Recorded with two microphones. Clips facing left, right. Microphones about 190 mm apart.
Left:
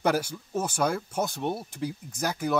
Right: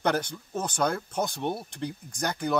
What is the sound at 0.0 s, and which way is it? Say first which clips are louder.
Speech: left 1 dB; 5° left (ahead or behind).